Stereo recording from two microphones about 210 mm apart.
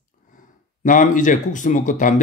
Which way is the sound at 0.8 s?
40° left (ahead or behind).